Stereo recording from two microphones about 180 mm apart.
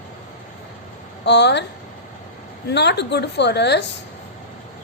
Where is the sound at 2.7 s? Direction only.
70° left (ahead or behind).